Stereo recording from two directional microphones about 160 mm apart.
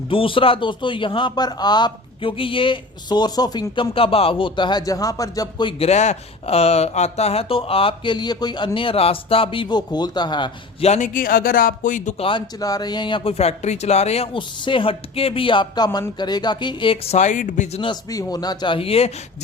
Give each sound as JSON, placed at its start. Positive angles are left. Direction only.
{"t": 0.1, "sound": "a man's voice", "side_deg": 35}
{"t": 5.9, "sound": "a man's voice", "side_deg": 45}
{"t": 10.8, "sound": "speech", "side_deg": 50}
{"t": 12.2, "sound": "a man's voice", "side_deg": 25}
{"t": 18.1, "sound": "speech", "side_deg": 20}